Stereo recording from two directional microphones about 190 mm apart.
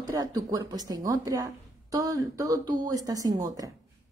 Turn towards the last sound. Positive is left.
turn(degrees=-20)  # may be behind; listen again after turning